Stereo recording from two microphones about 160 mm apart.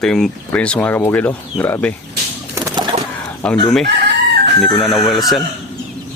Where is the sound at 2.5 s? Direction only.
20° right (ahead or behind).